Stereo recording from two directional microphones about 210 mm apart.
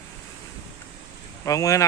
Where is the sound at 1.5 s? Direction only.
15° left (ahead or behind).